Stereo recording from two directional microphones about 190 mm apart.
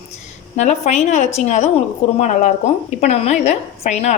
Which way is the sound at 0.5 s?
40° left (ahead or behind).